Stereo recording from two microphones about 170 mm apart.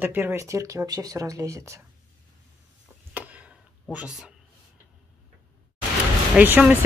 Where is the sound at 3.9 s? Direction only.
5° right (ahead or behind).